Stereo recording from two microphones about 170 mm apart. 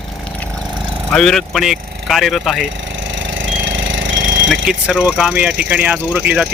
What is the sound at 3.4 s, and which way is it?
Jackhammer, 90° right.